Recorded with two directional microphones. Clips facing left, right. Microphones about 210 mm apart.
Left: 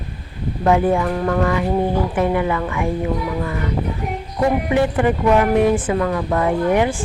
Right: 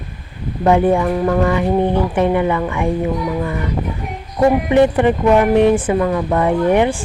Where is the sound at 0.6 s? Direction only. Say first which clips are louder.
Right 3 dB; 30° right (ahead or behind).